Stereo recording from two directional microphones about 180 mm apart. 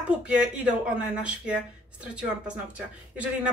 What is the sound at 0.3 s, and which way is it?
Speech, 5° right (ahead or behind).